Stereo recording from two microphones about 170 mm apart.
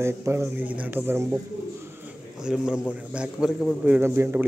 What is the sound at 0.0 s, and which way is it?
A man's voice, 15° right (ahead or behind).